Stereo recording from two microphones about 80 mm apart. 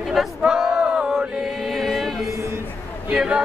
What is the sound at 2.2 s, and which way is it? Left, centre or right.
Speech, right.